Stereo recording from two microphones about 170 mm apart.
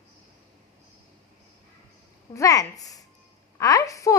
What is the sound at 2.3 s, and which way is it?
A woman's voice, 20° left (ahead or behind).